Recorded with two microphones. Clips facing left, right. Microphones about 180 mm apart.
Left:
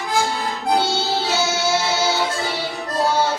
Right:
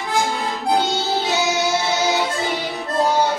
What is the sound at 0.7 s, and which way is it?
Music, 15° right (ahead or behind).